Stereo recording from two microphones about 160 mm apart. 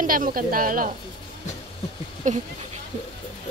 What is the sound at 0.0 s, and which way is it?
Speech, 60° right (ahead or behind).